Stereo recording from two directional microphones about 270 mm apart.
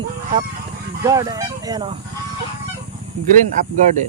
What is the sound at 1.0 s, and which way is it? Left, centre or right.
Speech, centre.